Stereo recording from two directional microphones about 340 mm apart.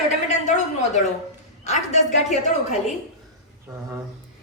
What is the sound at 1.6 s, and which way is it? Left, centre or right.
Speech, centre.